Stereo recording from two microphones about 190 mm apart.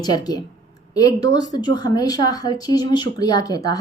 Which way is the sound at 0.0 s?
20° left (ahead or behind).